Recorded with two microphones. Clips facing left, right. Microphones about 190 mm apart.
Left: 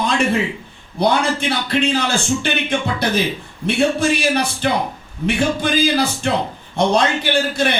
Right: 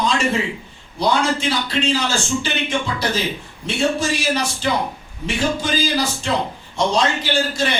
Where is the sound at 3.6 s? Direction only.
60° left (ahead or behind).